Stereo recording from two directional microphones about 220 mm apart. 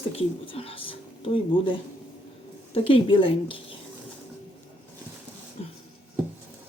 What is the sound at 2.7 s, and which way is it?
Speech, 25° left (ahead or behind).